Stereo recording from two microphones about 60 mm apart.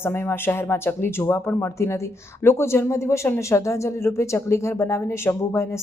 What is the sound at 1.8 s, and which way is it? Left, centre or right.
A woman's voice, left.